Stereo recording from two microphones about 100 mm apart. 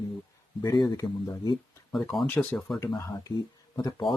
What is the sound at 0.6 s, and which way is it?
Speech, 30° left (ahead or behind).